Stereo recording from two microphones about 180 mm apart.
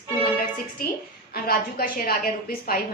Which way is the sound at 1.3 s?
55° left (ahead or behind).